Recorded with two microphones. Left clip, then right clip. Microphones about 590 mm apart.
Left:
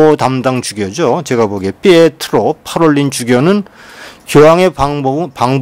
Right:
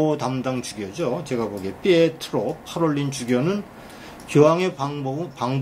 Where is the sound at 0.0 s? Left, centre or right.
Left.